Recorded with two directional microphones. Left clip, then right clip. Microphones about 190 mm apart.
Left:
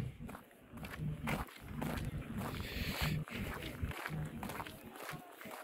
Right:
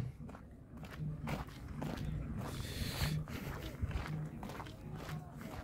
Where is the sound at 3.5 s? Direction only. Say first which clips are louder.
Left 2 dB; 15° left (ahead or behind).